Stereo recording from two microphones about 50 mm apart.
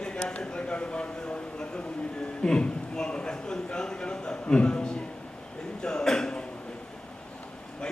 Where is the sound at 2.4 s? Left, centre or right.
Centre.